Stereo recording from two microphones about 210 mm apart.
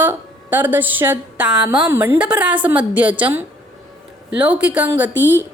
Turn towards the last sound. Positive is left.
turn(degrees=-10)  # may be behind; listen again after turning